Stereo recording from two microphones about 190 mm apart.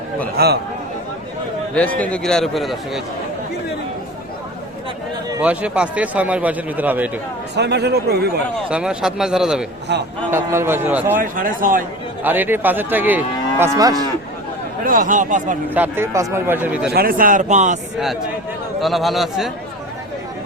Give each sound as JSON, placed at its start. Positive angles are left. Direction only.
{"t": 0.3, "sound": "a man's voice", "side_deg": -55}
{"t": 2.0, "sound": "a man's voice", "side_deg": 5}
{"t": 5.4, "sound": "a man's voice", "side_deg": -5}
{"t": 7.5, "sound": "speech", "side_deg": -60}
{"t": 8.7, "sound": "a man's voice", "side_deg": -5}
{"t": 9.9, "sound": "speech", "side_deg": -65}
{"t": 10.3, "sound": "a man's voice", "side_deg": -15}
{"t": 11.2, "sound": "speech", "side_deg": -45}
{"t": 12.2, "sound": "a man's voice", "side_deg": -10}
{"t": 14.8, "sound": "speech", "side_deg": -45}
{"t": 15.7, "sound": "a man's voice", "side_deg": -10}
{"t": 16.9, "sound": "speech", "side_deg": -50}
{"t": 18.8, "sound": "a man's voice", "side_deg": 0}